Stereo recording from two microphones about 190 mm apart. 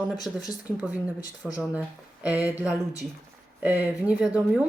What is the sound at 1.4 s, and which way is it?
A woman's voice, centre (ahead or behind).